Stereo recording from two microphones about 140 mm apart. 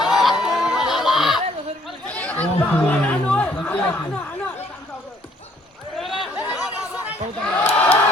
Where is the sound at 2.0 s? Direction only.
10° left (ahead or behind).